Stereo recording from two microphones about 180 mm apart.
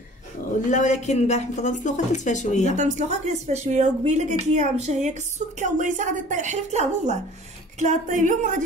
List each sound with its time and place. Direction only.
0.7 s a woman's voice: 40° left (ahead or behind)
2.7 s a woman's voice: 40° right (ahead or behind)